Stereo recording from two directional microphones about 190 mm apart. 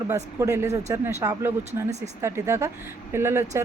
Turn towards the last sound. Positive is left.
turn(degrees=-15)  # may be behind; listen again after turning